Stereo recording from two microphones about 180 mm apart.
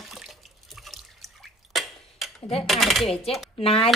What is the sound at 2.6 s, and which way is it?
Speech, centre (ahead or behind).